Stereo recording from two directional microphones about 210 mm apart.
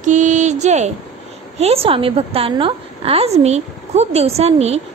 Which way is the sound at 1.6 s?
30° right (ahead or behind).